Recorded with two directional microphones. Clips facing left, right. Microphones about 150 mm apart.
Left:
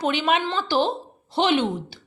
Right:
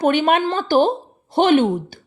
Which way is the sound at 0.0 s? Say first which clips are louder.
Right 6 dB; 50° right (ahead or behind).